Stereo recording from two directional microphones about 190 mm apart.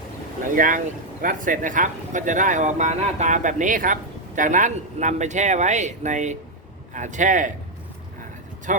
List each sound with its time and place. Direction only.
0.4 s speech: 45° right (ahead or behind)